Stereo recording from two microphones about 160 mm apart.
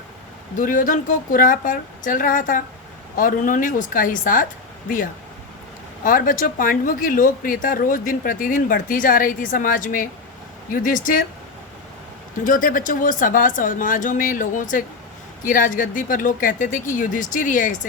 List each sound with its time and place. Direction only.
0.6 s speech: 55° left (ahead or behind)
6.0 s speech: 60° left (ahead or behind)
12.5 s speech: 55° left (ahead or behind)